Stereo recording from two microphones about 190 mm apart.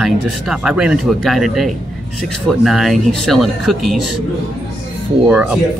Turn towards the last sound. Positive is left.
turn(degrees=-10)  # may be behind; listen again after turning